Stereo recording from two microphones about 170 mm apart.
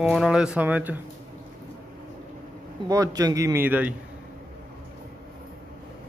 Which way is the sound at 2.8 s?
20° right (ahead or behind).